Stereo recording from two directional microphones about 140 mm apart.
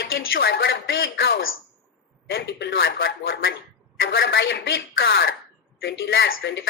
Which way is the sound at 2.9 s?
90° left.